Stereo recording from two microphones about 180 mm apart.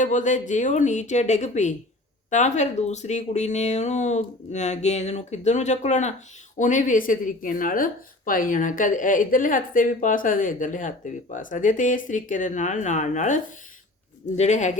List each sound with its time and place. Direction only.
0.0 s speech: 45° left (ahead or behind)